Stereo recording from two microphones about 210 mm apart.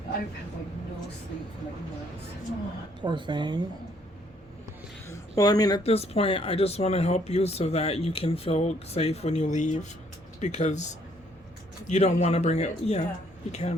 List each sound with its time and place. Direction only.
3.0 s speech: 20° right (ahead or behind)
5.4 s speech: 20° left (ahead or behind)
5.8 s speech: 30° left (ahead or behind)
11.9 s speech: 30° left (ahead or behind)